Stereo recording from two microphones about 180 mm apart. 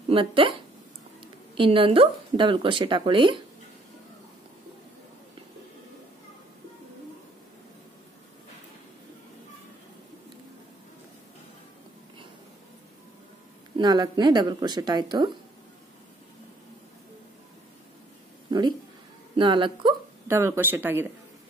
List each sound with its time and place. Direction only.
0.1 s speech: 30° right (ahead or behind)
13.7 s speech: 25° right (ahead or behind)
19.3 s speech: 25° right (ahead or behind)
20.2 s speech: 15° right (ahead or behind)